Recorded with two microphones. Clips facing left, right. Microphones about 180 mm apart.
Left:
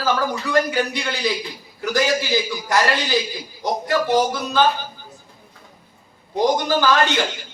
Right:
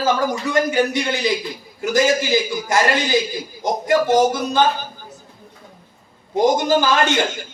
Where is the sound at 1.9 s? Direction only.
45° right (ahead or behind).